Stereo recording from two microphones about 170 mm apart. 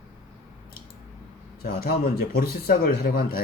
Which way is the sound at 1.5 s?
60° left (ahead or behind).